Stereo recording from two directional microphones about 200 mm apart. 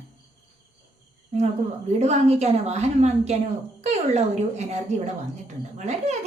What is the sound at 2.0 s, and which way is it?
A woman's voice, 35° right (ahead or behind).